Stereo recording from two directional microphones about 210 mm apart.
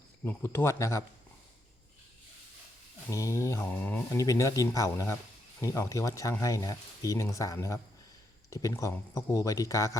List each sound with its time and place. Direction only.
0.3 s speech: 10° left (ahead or behind)
3.1 s speech: 15° left (ahead or behind)